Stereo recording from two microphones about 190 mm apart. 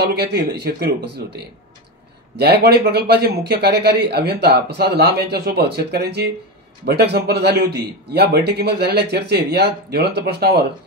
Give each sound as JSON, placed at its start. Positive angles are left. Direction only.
{"t": 0.0, "sound": "a man's voice", "side_deg": -60}